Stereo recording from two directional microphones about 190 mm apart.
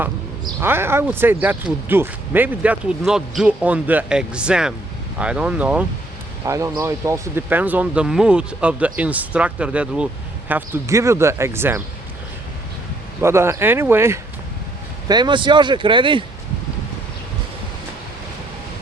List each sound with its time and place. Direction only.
0.6 s speech: 10° right (ahead or behind)
6.4 s speech: 15° right (ahead or behind)
13.2 s speech: 15° right (ahead or behind)